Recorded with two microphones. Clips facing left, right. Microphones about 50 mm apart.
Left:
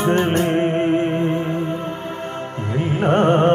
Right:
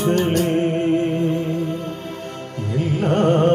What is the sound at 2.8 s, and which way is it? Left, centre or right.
Music, left.